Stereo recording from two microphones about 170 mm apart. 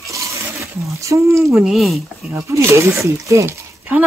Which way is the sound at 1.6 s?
Centre (ahead or behind).